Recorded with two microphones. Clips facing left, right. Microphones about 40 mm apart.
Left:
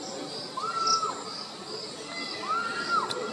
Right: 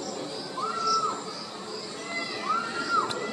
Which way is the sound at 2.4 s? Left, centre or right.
Centre.